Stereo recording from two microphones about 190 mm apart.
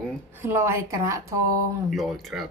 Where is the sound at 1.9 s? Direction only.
Centre (ahead or behind).